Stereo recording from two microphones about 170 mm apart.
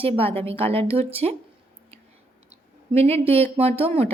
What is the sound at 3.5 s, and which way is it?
Speech, 35° right (ahead or behind).